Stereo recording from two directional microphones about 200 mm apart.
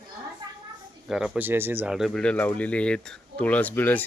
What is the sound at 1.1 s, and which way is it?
Speech, centre (ahead or behind).